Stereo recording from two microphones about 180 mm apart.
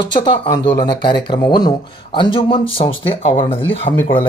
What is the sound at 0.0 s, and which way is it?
Speech, 25° left (ahead or behind).